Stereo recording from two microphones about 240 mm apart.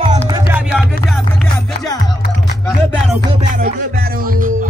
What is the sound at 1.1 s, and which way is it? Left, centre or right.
Music, centre.